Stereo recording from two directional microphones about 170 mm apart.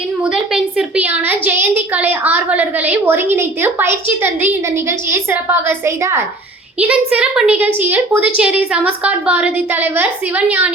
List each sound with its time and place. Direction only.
0.2 s a woman's voice: 5° right (ahead or behind)